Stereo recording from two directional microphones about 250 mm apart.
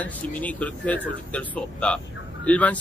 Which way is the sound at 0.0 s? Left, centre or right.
Centre.